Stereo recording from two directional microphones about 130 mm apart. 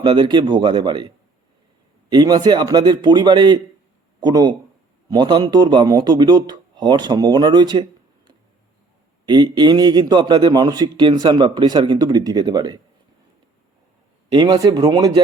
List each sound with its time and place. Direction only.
0.0 s a man's voice: 35° right (ahead or behind)
9.2 s a man's voice: 35° right (ahead or behind)
14.3 s a man's voice: 30° right (ahead or behind)